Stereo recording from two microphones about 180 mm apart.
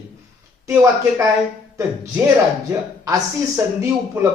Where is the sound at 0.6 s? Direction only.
15° right (ahead or behind).